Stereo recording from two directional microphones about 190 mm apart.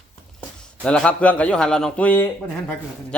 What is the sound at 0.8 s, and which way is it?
Speech, 5° left (ahead or behind).